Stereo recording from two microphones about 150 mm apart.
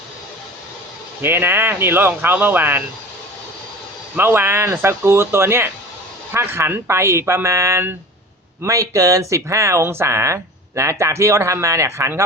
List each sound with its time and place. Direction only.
1.2 s speech: 15° right (ahead or behind)
4.1 s speech: 15° right (ahead or behind)